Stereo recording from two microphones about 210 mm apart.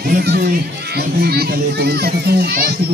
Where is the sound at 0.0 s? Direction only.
50° right (ahead or behind).